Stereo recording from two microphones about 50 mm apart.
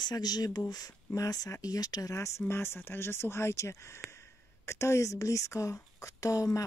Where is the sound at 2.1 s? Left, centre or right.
Left.